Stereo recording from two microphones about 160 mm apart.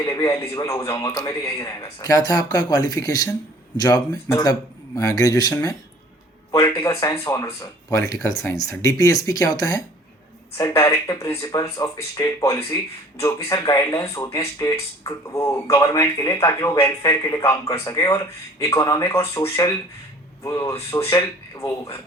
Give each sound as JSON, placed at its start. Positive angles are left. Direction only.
{"t": 0.0, "sound": "speech", "side_deg": 20}